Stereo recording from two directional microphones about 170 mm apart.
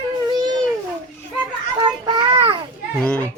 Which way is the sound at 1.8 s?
30° right (ahead or behind).